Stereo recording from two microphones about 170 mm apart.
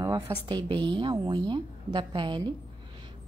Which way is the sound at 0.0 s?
25° right (ahead or behind).